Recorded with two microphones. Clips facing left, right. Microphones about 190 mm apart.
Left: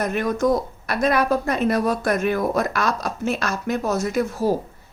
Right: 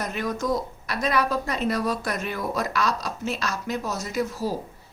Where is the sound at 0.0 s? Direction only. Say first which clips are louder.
Left 7 dB; 55° left (ahead or behind).